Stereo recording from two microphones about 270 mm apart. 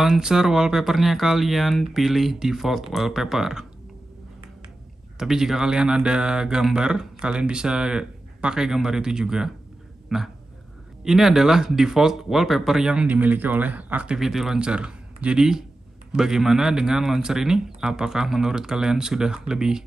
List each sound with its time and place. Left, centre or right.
0.0 s speech: centre
5.2 s speech: centre